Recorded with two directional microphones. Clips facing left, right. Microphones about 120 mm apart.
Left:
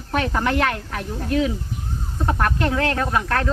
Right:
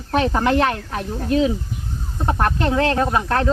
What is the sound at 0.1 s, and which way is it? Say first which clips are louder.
Speech: right 4 dB; 25° right (ahead or behind).